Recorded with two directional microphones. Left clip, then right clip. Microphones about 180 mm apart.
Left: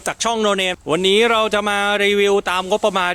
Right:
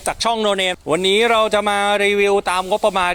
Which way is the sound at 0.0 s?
25° left (ahead or behind).